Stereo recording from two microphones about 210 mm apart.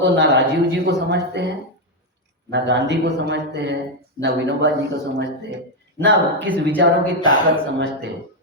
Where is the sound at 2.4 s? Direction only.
55° right (ahead or behind).